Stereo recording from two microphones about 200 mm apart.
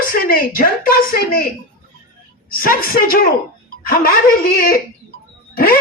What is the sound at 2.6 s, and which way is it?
Speech, 45° left (ahead or behind).